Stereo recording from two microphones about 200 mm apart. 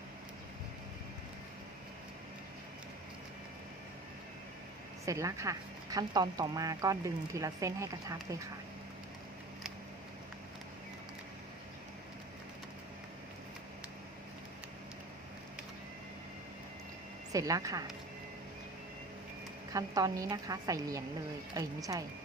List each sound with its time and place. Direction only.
5.0 s speech: 15° right (ahead or behind)
17.3 s speech: 15° right (ahead or behind)
19.7 s speech: 15° right (ahead or behind)